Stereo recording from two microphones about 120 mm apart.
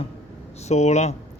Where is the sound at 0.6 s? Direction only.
70° left (ahead or behind).